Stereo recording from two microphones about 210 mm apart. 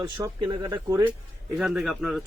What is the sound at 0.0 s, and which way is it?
Speech, 20° right (ahead or behind).